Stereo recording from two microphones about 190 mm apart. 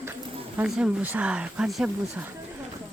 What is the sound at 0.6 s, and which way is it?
Speech, 5° right (ahead or behind).